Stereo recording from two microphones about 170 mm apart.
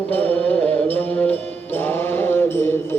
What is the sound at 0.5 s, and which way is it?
Music, 35° right (ahead or behind).